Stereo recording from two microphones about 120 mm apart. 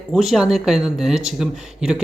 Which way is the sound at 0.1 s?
Centre (ahead or behind).